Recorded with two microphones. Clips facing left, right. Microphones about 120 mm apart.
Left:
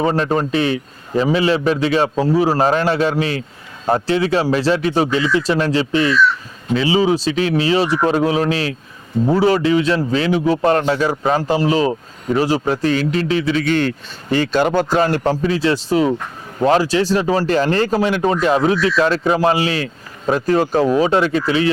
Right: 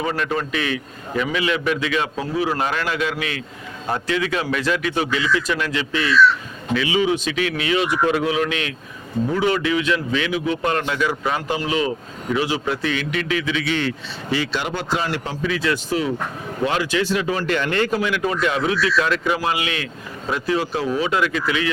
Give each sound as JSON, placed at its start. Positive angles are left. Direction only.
{"t": 0.0, "sound": "a man's voice", "side_deg": 35}